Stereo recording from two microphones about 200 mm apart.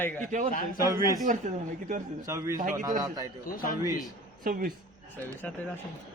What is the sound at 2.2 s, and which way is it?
Speech, 15° right (ahead or behind).